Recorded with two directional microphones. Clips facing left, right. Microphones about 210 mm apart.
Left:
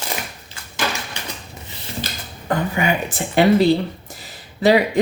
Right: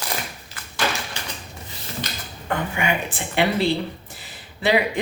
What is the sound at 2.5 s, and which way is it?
Speech, 40° left (ahead or behind).